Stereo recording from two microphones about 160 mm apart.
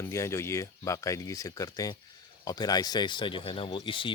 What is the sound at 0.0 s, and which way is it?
Speech, 15° left (ahead or behind).